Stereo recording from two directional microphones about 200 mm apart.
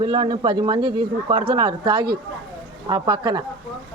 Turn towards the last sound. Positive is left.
turn(degrees=-20)  # may be behind; listen again after turning